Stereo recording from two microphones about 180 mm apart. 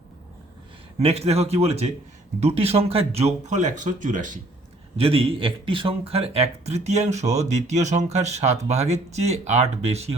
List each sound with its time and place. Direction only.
0.9 s speech: 35° right (ahead or behind)
4.9 s speech: 30° right (ahead or behind)